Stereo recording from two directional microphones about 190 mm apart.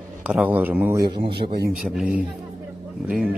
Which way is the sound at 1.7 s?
5° right (ahead or behind).